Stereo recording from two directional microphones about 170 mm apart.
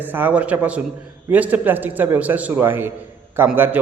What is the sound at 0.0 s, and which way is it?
A man's voice, 10° right (ahead or behind).